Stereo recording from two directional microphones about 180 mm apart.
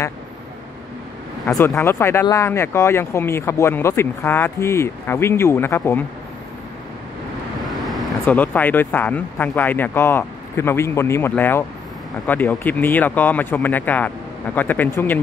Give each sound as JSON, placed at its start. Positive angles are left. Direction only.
{"t": 1.4, "sound": "speech", "side_deg": 15}
{"t": 7.6, "sound": "speech", "side_deg": 0}